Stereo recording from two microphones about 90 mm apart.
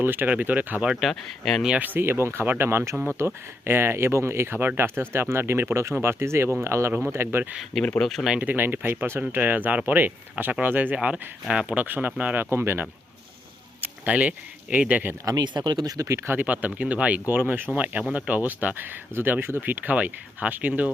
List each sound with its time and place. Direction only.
0.0 s speech: 20° right (ahead or behind)
0.9 s speech: 5° right (ahead or behind)
1.1 s speech: 5° left (ahead or behind)
1.8 s speech: 25° right (ahead or behind)
7.9 s speech: 5° left (ahead or behind)
8.3 s speech: 20° right (ahead or behind)
13.8 s speech: 15° right (ahead or behind)
15.2 s speech: 45° right (ahead or behind)
16.3 s speech: 20° right (ahead or behind)